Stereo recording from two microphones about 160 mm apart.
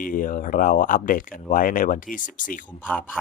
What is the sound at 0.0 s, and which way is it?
Speech, 60° left (ahead or behind).